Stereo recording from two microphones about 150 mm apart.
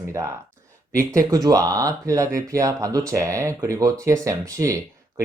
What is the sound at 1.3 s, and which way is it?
Speech, 25° right (ahead or behind).